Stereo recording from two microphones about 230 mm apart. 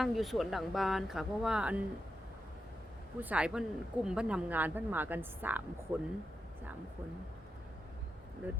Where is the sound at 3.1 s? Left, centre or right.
Centre.